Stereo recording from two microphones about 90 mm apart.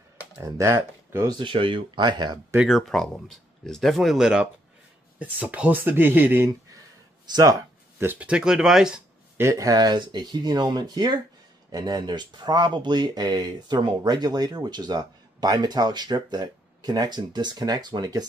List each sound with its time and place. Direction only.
0.4 s speech: 35° right (ahead or behind)
1.4 s speech: 75° right (ahead or behind); by 2.4 s 55° right (ahead or behind)
2.8 s speech: 5° left (ahead or behind)
5.2 s speech: 15° right (ahead or behind)
8.0 s speech: 20° right (ahead or behind)
8.3 s speech: 10° right (ahead or behind)
9.4 s speech: 35° right (ahead or behind)